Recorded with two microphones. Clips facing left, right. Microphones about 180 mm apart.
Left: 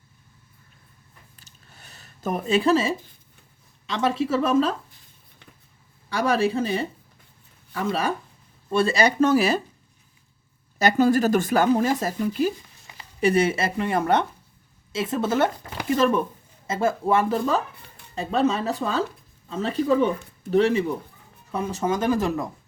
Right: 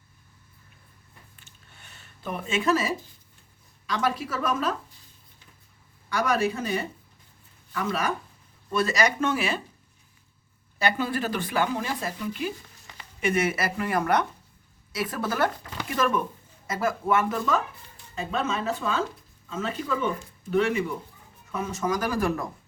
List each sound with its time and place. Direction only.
1.4 s a sound: 40° left (ahead or behind)
3.8 s speech: 25° left (ahead or behind)
6.1 s speech: 30° left (ahead or behind)
10.8 s speech: 40° left (ahead or behind); by 22.4 s 20° left (ahead or behind)